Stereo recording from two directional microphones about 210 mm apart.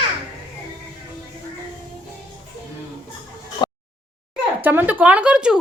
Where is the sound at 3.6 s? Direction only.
20° left (ahead or behind).